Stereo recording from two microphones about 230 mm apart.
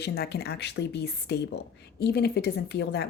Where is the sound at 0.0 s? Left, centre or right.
Left.